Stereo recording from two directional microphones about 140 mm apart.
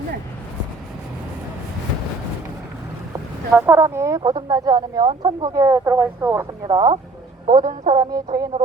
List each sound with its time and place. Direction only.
3.1 s speech: 20° right (ahead or behind)
6.7 s speech: 30° right (ahead or behind)
7.6 s speech: 70° right (ahead or behind)
7.9 s speech: 25° right (ahead or behind)